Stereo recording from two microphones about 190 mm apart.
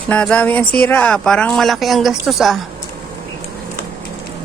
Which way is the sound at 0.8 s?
5° left (ahead or behind).